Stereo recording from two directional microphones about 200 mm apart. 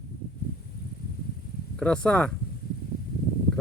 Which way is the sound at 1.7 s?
5° left (ahead or behind).